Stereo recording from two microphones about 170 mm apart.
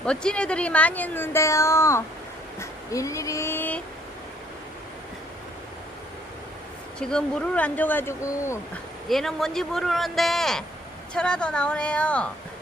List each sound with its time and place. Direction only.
0.0 s speech: 5° left (ahead or behind)
7.0 s speech: 5° left (ahead or behind)
9.0 s speech: centre (ahead or behind)